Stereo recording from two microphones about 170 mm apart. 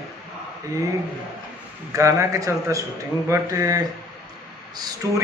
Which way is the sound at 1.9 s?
20° right (ahead or behind).